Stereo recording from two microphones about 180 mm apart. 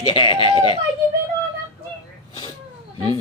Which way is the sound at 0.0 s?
30° left (ahead or behind).